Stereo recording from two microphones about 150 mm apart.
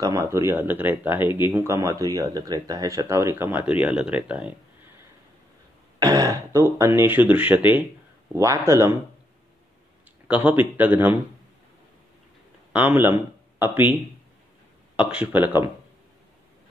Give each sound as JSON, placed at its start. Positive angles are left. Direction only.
{"t": 0.0, "sound": "speech", "side_deg": -20}
{"t": 5.9, "sound": "speech", "side_deg": -25}
{"t": 10.2, "sound": "speech", "side_deg": -10}
{"t": 12.7, "sound": "speech", "side_deg": -10}
{"t": 15.0, "sound": "speech", "side_deg": -10}